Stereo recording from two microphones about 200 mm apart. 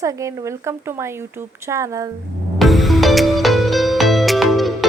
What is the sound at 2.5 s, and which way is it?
Music, centre (ahead or behind).